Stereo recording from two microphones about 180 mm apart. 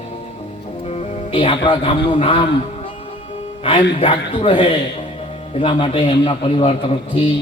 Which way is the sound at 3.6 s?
30° left (ahead or behind).